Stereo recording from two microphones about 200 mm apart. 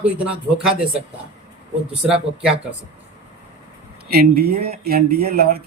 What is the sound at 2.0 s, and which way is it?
Speech, 5° right (ahead or behind).